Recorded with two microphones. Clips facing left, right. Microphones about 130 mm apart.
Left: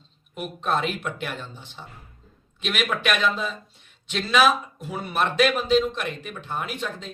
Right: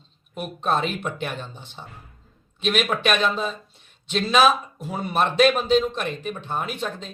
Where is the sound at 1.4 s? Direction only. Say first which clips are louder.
Right 2 dB; 20° right (ahead or behind).